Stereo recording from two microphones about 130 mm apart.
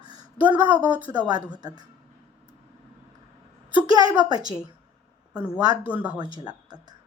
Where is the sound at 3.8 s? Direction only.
40° left (ahead or behind).